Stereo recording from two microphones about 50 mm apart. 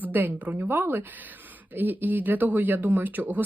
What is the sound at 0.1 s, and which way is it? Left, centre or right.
Speech, right.